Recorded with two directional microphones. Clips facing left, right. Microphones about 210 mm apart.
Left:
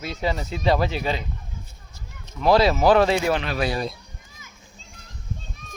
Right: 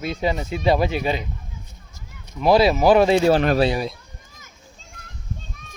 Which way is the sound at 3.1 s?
30° right (ahead or behind).